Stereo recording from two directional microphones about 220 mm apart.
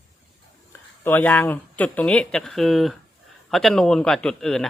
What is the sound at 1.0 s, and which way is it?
Speech, 10° left (ahead or behind).